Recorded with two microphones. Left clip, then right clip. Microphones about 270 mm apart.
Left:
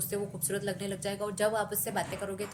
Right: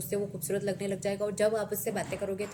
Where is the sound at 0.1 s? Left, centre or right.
Centre.